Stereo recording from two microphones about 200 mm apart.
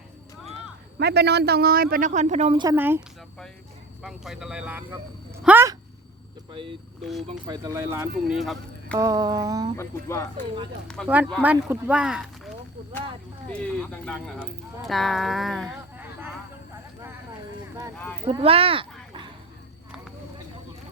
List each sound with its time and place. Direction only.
0.9 s a man's voice: 55° right (ahead or behind); by 2.6 s 30° right (ahead or behind)
2.6 s speech: 10° right (ahead or behind)
4.0 s speech: centre (ahead or behind)
5.4 s a sound: 10° right (ahead or behind)
7.3 s speech: 20° right (ahead or behind)
8.3 s speech: centre (ahead or behind)
9.0 s speech: 15° right (ahead or behind)
9.7 s speech: 15° left (ahead or behind)
10.8 s speech: 5° left (ahead or behind)
14.0 s speech: 5° left (ahead or behind)
18.3 s speech: 30° right (ahead or behind)